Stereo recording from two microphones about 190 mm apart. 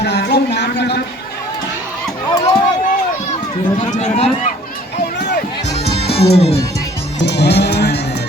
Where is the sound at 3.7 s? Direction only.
40° left (ahead or behind).